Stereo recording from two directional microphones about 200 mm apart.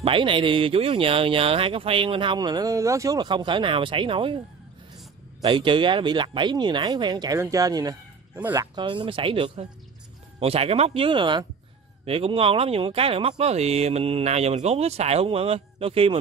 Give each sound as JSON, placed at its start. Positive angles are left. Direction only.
{"t": 0.0, "sound": "speech", "side_deg": -25}
{"t": 5.4, "sound": "speech", "side_deg": -25}
{"t": 8.7, "sound": "speech", "side_deg": -25}